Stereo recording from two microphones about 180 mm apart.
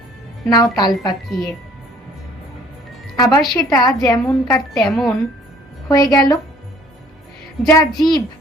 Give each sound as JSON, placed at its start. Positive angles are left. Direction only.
{"t": 0.4, "sound": "a woman's voice", "side_deg": 25}
{"t": 1.3, "sound": "speech", "side_deg": 0}
{"t": 3.2, "sound": "a woman's voice", "side_deg": 20}
{"t": 4.9, "sound": "speech", "side_deg": 0}
{"t": 5.9, "sound": "a woman's voice", "side_deg": 20}
{"t": 7.7, "sound": "a woman's voice", "side_deg": 20}